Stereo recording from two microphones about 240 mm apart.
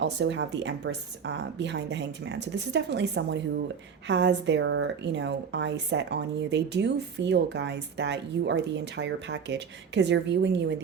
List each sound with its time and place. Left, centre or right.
0.0 s a woman's voice: right